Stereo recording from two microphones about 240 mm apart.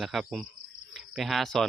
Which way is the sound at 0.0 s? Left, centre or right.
Centre.